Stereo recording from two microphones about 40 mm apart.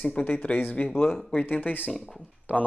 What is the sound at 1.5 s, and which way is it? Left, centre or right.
Speech, left.